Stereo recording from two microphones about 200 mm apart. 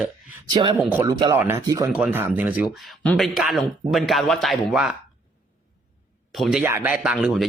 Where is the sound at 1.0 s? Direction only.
20° right (ahead or behind).